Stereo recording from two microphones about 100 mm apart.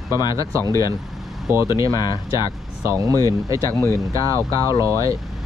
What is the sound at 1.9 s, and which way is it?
Speech, 40° left (ahead or behind).